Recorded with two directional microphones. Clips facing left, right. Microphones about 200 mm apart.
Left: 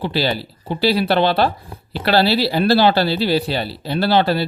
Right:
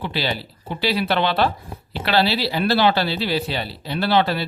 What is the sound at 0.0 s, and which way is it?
Speech, 35° left (ahead or behind).